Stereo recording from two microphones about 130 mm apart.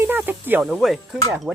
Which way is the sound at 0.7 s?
Centre (ahead or behind).